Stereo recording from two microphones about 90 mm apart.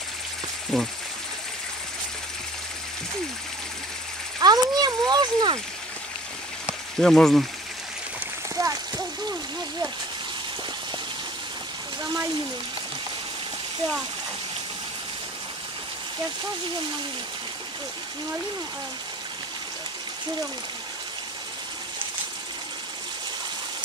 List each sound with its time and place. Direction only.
0.7 s frying: 5° left (ahead or behind)
4.4 s speech: 50° right (ahead or behind)
7.0 s frying: 5° left (ahead or behind)
8.5 s a sound: 40° right (ahead or behind)